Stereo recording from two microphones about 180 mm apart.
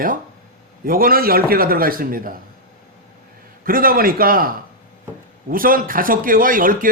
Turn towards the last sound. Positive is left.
turn(degrees=-50)  # may be behind; listen again after turning